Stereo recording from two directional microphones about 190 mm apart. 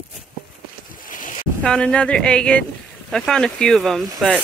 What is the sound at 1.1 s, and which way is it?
Boat, 45° left (ahead or behind).